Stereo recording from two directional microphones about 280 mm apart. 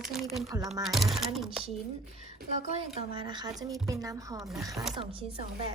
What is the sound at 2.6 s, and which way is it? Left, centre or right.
Speech, right.